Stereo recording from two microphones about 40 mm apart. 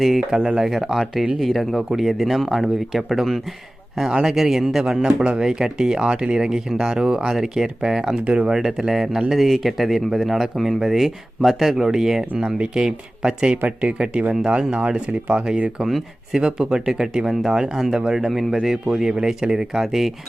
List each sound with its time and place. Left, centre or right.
0.0 s speech: centre
0.4 s speech: centre
0.7 s speech: centre
5.0 s speech: right
5.4 s speech: centre
7.3 s speech: centre
8.2 s speech: right
8.4 s speech: centre
12.5 s speech: right
15.9 s speech: centre
16.6 s speech: centre